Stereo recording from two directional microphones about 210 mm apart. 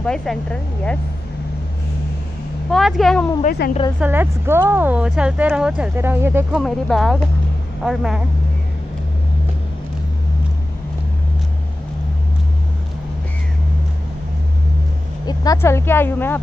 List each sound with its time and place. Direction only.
0.0 s a woman's voice: 5° left (ahead or behind)
2.7 s a woman's voice: centre (ahead or behind)
3.4 s a woman's voice: 45° left (ahead or behind)
4.0 s speech: 10° right (ahead or behind)
6.6 s a woman's voice: centre (ahead or behind)
15.2 s speech: 15° left (ahead or behind)